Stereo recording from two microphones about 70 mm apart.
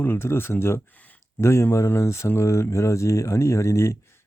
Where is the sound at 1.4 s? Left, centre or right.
Left.